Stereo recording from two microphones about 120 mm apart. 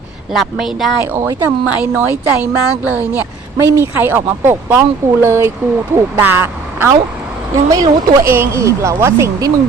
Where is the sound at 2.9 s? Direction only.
15° right (ahead or behind).